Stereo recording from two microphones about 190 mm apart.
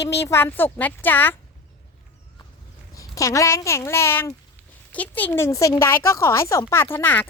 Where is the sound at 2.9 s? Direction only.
15° left (ahead or behind).